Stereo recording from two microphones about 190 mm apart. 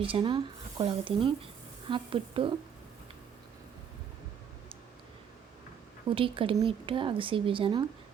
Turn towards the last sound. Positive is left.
turn(degrees=-25)  # may be behind; listen again after turning